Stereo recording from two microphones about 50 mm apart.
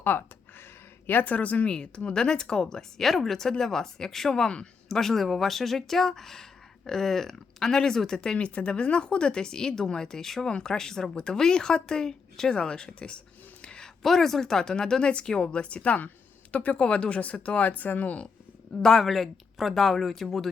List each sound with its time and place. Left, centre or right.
0.0 s speech: left; by 13.1 s centre
13.6 s a sound: centre
14.0 s speech: centre; by 18.3 s left
18.8 s speech: centre